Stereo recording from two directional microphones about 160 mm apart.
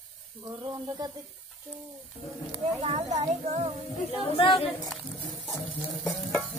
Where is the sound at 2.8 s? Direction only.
40° right (ahead or behind).